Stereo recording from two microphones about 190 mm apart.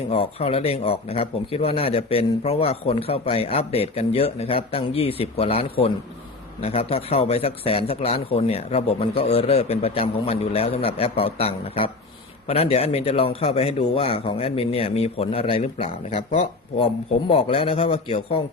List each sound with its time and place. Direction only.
0.1 s speech: 30° left (ahead or behind)